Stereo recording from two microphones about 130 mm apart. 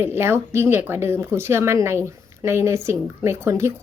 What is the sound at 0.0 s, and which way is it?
Speech, 20° right (ahead or behind).